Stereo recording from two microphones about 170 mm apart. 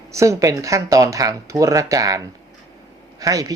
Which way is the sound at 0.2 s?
20° right (ahead or behind).